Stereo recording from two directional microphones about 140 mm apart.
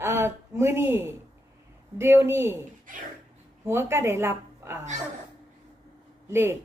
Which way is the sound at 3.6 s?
20° right (ahead or behind).